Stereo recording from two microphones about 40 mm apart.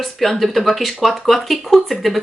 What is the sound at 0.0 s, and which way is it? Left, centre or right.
Speech, centre.